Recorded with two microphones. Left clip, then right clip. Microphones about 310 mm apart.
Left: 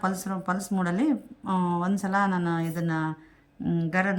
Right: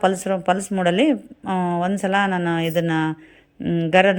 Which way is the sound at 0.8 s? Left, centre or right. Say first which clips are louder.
Right 9 dB; centre.